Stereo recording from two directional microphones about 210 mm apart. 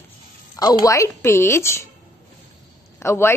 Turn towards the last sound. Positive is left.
turn(degrees=10)  # may be behind; listen again after turning